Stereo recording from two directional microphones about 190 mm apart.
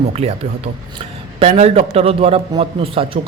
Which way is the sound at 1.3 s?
35° right (ahead or behind).